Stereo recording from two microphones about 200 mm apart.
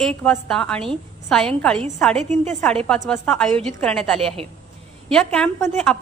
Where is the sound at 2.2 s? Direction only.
35° right (ahead or behind).